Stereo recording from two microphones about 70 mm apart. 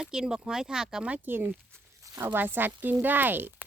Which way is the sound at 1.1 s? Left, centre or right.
Right.